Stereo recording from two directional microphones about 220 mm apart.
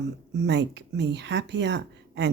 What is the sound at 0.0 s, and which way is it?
Speech, 50° right (ahead or behind).